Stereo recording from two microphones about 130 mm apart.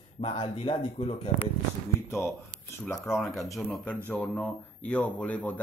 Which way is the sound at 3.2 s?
Centre (ahead or behind).